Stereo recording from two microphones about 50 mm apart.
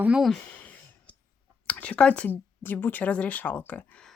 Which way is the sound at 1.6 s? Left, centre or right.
Left.